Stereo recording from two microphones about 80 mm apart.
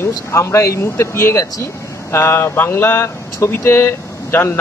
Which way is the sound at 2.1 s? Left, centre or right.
Left.